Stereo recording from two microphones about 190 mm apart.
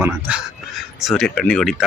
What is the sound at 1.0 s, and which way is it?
Speech, centre (ahead or behind).